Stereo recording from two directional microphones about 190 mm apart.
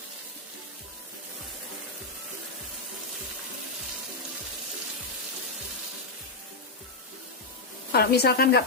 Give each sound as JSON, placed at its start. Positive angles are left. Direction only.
{"t": 7.9, "sound": "a woman's voice", "side_deg": 55}